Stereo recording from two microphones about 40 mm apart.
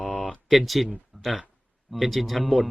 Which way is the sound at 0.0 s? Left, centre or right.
Left.